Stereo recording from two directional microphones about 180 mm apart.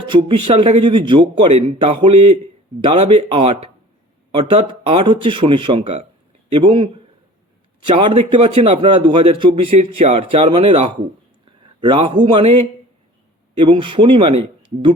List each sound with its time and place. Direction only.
0.1 s speech: 25° right (ahead or behind)
7.9 s speech: 30° right (ahead or behind)
13.7 s speech: 30° right (ahead or behind)